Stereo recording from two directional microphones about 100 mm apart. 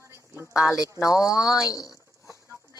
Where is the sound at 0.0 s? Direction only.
25° right (ahead or behind).